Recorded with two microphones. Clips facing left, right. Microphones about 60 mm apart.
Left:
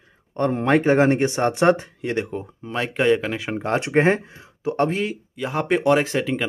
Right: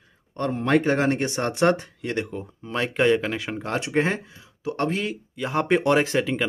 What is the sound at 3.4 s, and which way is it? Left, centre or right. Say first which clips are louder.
Speech: left 4 dB; left.